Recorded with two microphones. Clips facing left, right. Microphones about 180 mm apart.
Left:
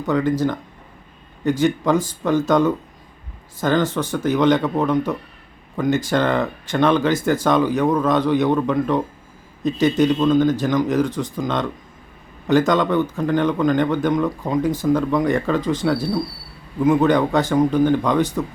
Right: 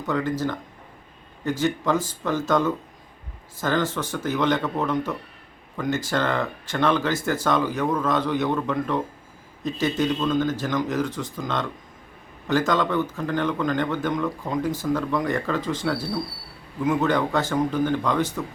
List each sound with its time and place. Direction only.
0.1 s speech: 15° left (ahead or behind)